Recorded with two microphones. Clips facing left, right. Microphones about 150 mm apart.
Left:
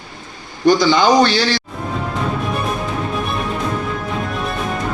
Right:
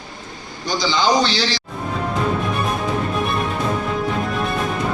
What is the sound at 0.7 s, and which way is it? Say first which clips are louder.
Speech: left 7 dB; 60° left (ahead or behind).